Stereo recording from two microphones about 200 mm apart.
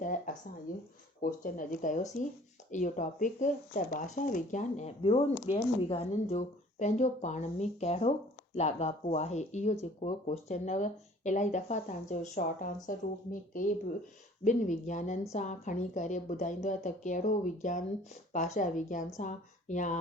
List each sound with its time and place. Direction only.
0.0 s a sound: 40° left (ahead or behind)
1.2 s speech: 45° left (ahead or behind)
5.0 s speech: 30° left (ahead or behind)